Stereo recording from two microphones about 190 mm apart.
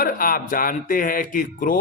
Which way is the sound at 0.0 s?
50° left (ahead or behind).